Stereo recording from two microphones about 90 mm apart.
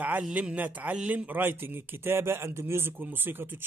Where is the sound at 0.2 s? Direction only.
15° right (ahead or behind).